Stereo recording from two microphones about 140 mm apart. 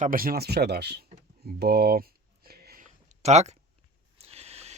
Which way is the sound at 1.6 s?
90° right.